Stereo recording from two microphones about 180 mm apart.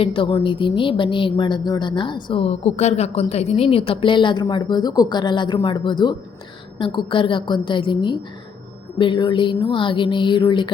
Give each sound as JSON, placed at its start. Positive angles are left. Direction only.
{"t": 0.0, "sound": "a woman's voice", "side_deg": 30}